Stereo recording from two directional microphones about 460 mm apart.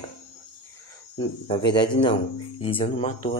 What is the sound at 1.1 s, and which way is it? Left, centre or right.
Speech, centre.